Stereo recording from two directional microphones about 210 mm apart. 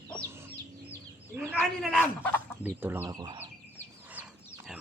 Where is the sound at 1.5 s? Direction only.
5° left (ahead or behind).